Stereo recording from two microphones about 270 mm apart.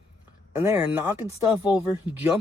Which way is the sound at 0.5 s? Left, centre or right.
Centre.